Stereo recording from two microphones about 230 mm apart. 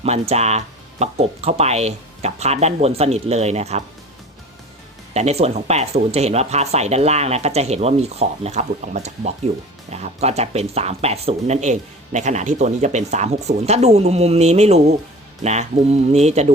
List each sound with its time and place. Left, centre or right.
0.0 s speech: right
5.1 s speech: right